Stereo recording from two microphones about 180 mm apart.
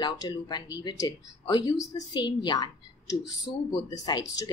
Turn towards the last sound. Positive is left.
turn(degrees=20)  # may be behind; listen again after turning